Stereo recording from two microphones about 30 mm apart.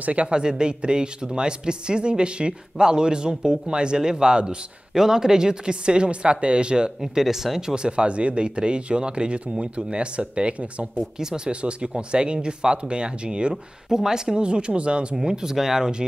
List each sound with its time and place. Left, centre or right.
0.0 s speech: right
0.3 s a man's voice: right
4.9 s speech: centre
7.0 s speech: centre
7.6 s speech: right
11.1 s a man's voice: centre
11.4 s speech: right
13.8 s speech: centre; by 15.1 s right
15.1 s a man's voice: right